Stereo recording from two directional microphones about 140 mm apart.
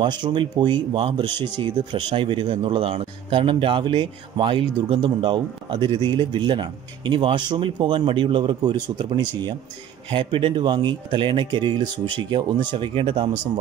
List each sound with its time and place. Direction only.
0.0 s speech: 30° right (ahead or behind)